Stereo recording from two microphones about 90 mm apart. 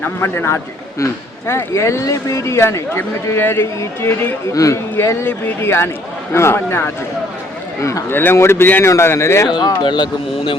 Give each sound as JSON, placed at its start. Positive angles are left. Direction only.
{"t": 0.0, "sound": "a man's voice", "side_deg": 25}
{"t": 8.1, "sound": "a man's voice", "side_deg": 25}
{"t": 9.5, "sound": "speech", "side_deg": 55}